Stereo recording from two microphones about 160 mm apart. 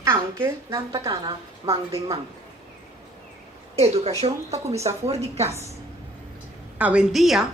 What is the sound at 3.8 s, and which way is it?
Speech, 40° right (ahead or behind).